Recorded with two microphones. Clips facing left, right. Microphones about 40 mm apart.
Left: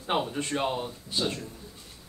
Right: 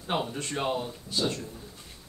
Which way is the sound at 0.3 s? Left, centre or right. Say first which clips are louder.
Left 1 dB; centre.